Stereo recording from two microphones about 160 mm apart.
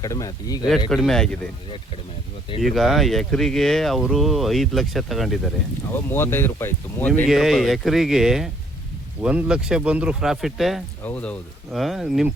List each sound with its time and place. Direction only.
0.0 s speech: 20° left (ahead or behind)
0.9 s speech: centre (ahead or behind)
2.6 s speech: centre (ahead or behind)
5.9 s speech: 15° left (ahead or behind)
7.3 s speech: centre (ahead or behind)
11.0 s speech: 10° left (ahead or behind)